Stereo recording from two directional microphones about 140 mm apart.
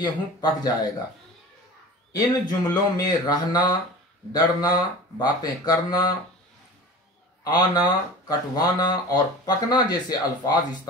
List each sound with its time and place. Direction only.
0.0 s speech: 30° left (ahead or behind)
2.1 s speech: 30° left (ahead or behind)
7.4 s speech: 30° left (ahead or behind)